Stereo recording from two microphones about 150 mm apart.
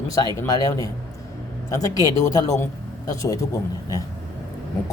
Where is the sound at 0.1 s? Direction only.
25° left (ahead or behind).